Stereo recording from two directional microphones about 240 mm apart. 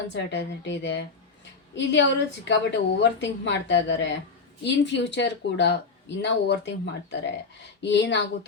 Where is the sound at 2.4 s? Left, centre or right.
Left.